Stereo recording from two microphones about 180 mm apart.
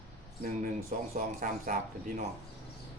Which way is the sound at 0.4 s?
50° right (ahead or behind).